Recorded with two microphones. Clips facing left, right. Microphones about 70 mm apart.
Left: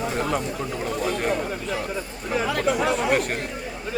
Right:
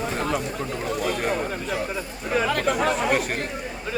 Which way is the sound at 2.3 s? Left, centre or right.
Right.